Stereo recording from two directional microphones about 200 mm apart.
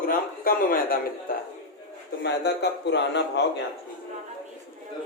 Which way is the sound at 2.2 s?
55° left (ahead or behind).